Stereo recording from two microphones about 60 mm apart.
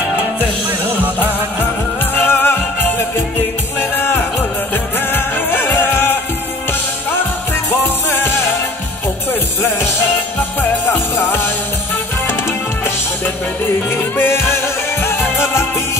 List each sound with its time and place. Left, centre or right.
2.1 s music: left
7.7 s music: left
10.6 s music: left
14.1 s music: left